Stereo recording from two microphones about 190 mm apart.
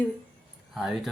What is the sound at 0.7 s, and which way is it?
Speech, centre (ahead or behind).